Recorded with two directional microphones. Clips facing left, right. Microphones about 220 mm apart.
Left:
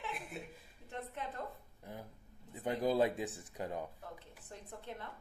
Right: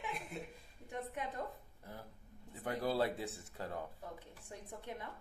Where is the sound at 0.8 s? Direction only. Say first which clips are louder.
Right 1 dB; 15° right (ahead or behind).